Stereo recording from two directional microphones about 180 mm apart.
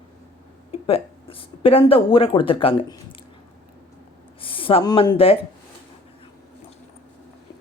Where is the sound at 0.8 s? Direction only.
30° left (ahead or behind).